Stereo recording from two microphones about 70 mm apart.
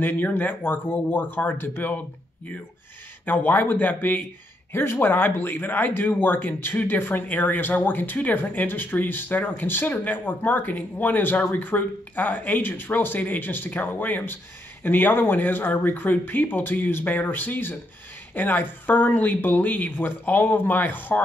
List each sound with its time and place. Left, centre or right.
0.0 s speech: left
3.3 s speech: left